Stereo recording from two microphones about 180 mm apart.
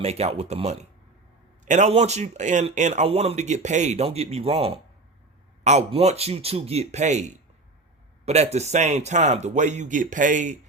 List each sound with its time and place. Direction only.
0.0 s a man's voice: 35° right (ahead or behind)